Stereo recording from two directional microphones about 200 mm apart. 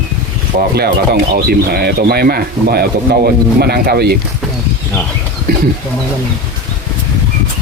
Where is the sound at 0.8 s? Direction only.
50° right (ahead or behind).